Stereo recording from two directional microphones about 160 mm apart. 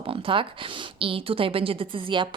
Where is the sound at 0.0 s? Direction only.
35° right (ahead or behind).